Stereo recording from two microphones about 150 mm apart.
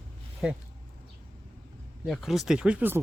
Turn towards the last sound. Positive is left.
turn(degrees=-10)  # may be behind; listen again after turning